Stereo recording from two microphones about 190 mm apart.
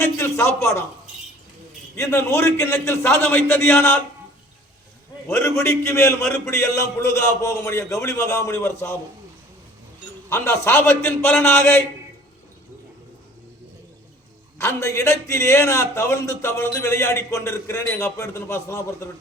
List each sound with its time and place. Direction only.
0.0 s speech: 15° left (ahead or behind)
2.0 s speech: 15° left (ahead or behind)
5.3 s speech: 15° left (ahead or behind)
10.2 s speech: 15° left (ahead or behind)
14.6 s speech: 15° left (ahead or behind)